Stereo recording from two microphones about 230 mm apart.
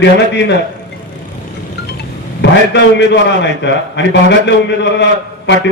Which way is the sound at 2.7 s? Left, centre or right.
Left.